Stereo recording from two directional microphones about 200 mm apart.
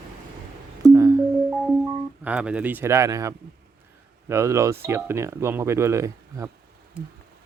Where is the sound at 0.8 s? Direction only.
15° right (ahead or behind).